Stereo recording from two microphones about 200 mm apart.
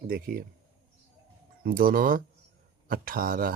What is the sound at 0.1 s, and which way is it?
Speech, 45° right (ahead or behind).